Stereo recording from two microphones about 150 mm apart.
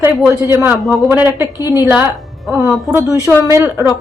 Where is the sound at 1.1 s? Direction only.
15° right (ahead or behind).